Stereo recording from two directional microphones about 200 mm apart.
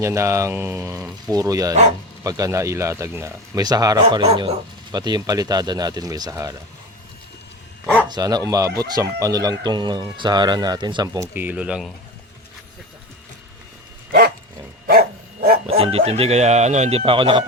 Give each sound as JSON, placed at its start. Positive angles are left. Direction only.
{"t": 0.0, "sound": "speech", "side_deg": -15}
{"t": 4.0, "sound": "speech", "side_deg": -30}
{"t": 8.0, "sound": "speech", "side_deg": -20}
{"t": 14.8, "sound": "dog", "side_deg": -50}
{"t": 15.8, "sound": "speech", "side_deg": -30}